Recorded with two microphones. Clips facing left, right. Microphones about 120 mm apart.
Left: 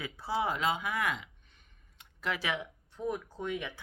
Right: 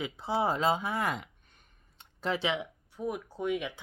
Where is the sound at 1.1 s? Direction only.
45° right (ahead or behind).